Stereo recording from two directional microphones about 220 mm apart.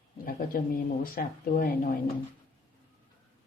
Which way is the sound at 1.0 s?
40° left (ahead or behind).